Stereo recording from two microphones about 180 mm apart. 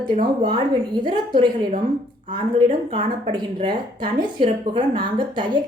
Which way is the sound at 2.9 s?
30° right (ahead or behind).